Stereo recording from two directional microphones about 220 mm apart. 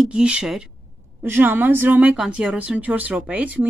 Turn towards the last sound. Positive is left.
turn(degrees=-5)  # may be behind; listen again after turning